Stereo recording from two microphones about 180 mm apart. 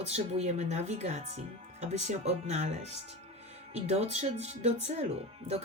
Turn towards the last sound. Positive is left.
turn(degrees=-35)  # may be behind; listen again after turning